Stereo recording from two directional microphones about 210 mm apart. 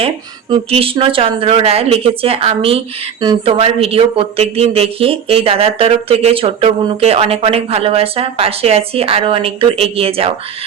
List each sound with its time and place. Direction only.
0.5 s speech: 25° right (ahead or behind)